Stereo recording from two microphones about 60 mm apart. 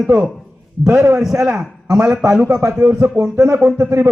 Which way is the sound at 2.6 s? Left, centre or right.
Right.